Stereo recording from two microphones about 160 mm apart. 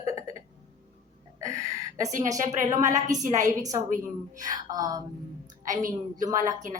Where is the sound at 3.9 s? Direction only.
55° right (ahead or behind).